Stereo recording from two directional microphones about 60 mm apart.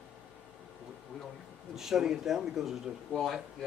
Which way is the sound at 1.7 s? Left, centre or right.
Centre.